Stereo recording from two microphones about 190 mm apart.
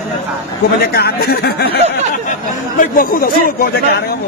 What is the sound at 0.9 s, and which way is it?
Speech, 55° left (ahead or behind).